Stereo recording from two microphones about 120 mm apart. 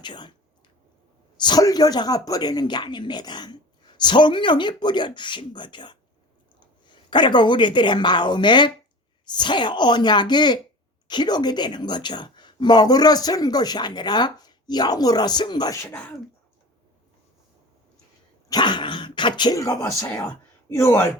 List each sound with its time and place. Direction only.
0.0 s speech: 40° left (ahead or behind)
1.4 s speech: 35° left (ahead or behind)
18.4 s speech: 40° left (ahead or behind); by 21.1 s 20° left (ahead or behind)